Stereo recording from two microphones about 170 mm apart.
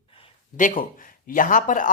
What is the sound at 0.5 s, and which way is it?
Speech, 50° left (ahead or behind).